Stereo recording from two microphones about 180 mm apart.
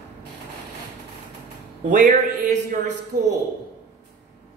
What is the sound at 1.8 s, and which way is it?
A man's voice, 45° right (ahead or behind).